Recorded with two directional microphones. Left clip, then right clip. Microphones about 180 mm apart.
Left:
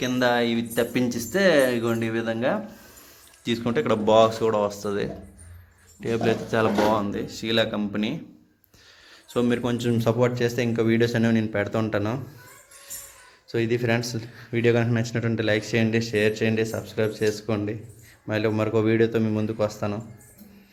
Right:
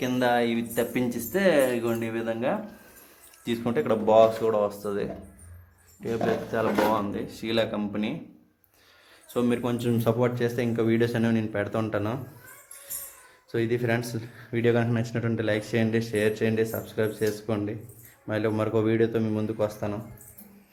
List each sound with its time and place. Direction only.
0.0 s speech: 5° right (ahead or behind); by 6.7 s 15° left (ahead or behind)
6.9 s speech: centre (ahead or behind)
9.3 s speech: 5° right (ahead or behind)
13.5 s speech: centre (ahead or behind)